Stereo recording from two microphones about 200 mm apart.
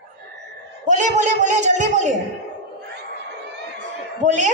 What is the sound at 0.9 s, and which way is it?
A woman's voice, 35° right (ahead or behind).